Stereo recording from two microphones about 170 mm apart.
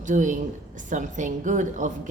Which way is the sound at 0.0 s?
50° right (ahead or behind).